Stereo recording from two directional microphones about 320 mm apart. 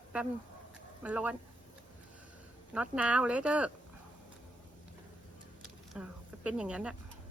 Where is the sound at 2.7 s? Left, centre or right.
Centre.